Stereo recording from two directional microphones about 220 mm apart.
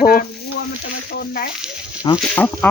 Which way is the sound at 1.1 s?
45° left (ahead or behind).